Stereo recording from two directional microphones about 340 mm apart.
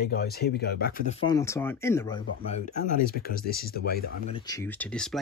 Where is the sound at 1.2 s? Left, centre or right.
Centre.